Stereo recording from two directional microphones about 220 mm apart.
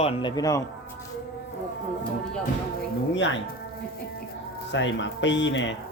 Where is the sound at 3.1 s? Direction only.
55° left (ahead or behind).